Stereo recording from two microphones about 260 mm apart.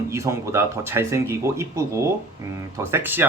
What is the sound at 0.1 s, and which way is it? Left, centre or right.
Speech, centre.